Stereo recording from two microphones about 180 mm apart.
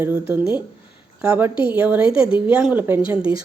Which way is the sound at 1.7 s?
10° right (ahead or behind).